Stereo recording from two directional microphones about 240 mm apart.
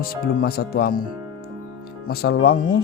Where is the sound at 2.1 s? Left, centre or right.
Left.